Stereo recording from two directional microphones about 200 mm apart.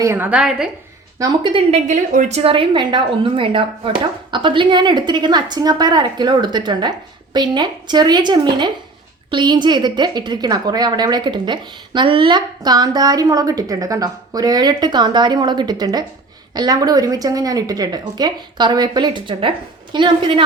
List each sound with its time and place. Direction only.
0.0 s a woman's voice: 10° right (ahead or behind)
1.2 s a woman's voice: 20° right (ahead or behind)
1.9 s a woman's voice: 35° right (ahead or behind)